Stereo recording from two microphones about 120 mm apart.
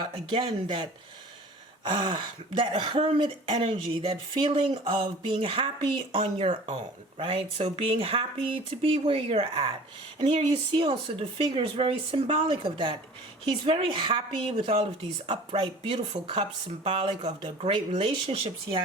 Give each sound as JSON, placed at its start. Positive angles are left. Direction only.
{"t": 0.0, "sound": "speech", "side_deg": -50}
{"t": 1.9, "sound": "speech", "side_deg": -45}
{"t": 17.7, "sound": "speech", "side_deg": -45}